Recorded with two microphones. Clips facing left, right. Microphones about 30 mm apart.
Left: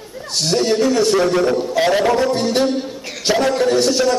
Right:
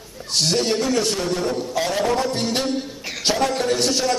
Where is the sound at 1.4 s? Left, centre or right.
Left.